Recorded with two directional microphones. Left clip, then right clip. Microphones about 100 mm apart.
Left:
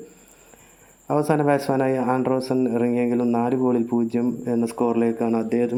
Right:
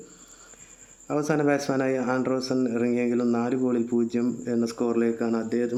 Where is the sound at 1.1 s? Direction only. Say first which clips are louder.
Left 4 dB; 30° left (ahead or behind).